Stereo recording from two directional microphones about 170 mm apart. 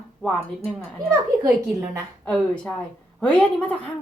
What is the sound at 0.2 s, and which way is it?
Speech, 10° left (ahead or behind).